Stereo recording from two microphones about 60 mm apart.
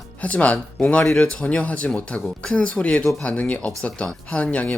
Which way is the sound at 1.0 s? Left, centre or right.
Centre.